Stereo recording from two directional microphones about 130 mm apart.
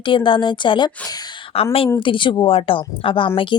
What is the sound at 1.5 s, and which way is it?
A woman's voice, 45° left (ahead or behind).